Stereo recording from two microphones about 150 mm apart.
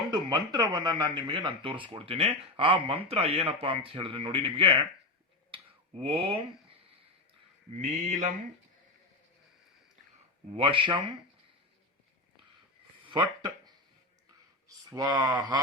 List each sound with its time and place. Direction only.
0.1 s speech: 30° right (ahead or behind)
5.5 s a sound: 40° right (ahead or behind)
7.8 s mantra: 55° right (ahead or behind)
10.5 s speech: 35° right (ahead or behind)
14.8 s speech: 25° right (ahead or behind)
15.4 s a sound: 30° right (ahead or behind)